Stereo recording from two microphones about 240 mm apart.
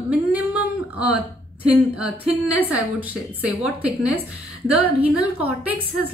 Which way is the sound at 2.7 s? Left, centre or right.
Centre.